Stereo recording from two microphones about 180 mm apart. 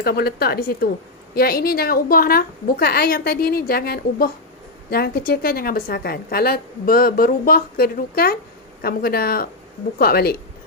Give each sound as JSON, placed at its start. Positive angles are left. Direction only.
{"t": 0.0, "sound": "a woman's voice", "side_deg": 60}